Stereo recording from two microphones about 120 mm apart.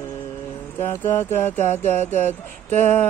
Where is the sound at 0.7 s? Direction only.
15° left (ahead or behind).